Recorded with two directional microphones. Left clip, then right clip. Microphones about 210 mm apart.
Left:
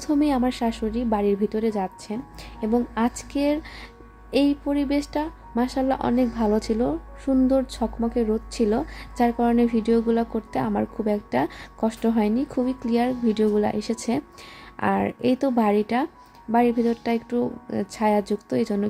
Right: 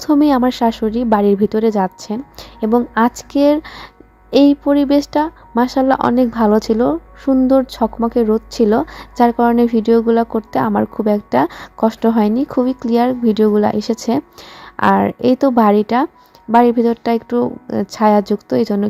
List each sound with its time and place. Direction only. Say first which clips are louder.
0.0 s speech: right 9 dB; 25° right (ahead or behind)